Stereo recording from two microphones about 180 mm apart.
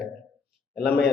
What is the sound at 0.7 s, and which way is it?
Speech, 60° left (ahead or behind).